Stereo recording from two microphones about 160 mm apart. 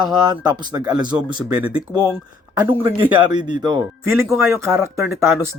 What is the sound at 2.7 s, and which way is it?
Speech, 30° right (ahead or behind).